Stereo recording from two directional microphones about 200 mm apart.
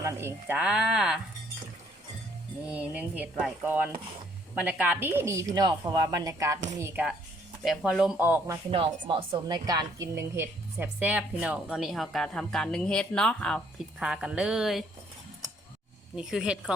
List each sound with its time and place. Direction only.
0.0 s a woman's voice: 15° right (ahead or behind)
2.6 s a woman's voice: 5° right (ahead or behind)
8.7 s a woman's voice: 25° right (ahead or behind); by 14.8 s centre (ahead or behind)
16.1 s a woman's voice: 5° right (ahead or behind)